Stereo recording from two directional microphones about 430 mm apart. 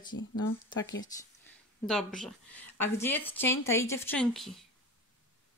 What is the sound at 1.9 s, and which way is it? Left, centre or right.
Speech, centre.